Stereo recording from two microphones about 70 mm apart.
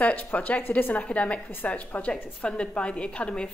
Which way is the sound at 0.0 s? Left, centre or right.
Left.